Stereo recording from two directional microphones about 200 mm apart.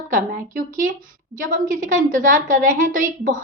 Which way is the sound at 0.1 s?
40° right (ahead or behind).